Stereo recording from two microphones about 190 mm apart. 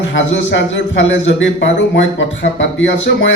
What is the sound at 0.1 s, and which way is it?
A man's voice, 75° left (ahead or behind).